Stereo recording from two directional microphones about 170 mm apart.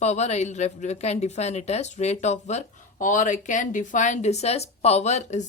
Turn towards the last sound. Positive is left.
turn(degrees=45)  # may be behind; listen again after turning